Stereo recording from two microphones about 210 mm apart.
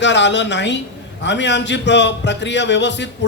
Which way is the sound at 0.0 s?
55° left (ahead or behind).